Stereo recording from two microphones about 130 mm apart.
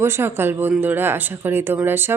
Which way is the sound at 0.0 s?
20° right (ahead or behind).